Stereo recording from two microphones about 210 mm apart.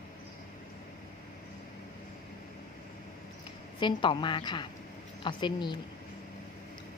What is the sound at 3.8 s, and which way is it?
A woman's voice, 25° left (ahead or behind).